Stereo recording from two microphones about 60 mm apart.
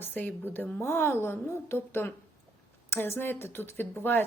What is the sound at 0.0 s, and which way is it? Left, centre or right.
Speech, left.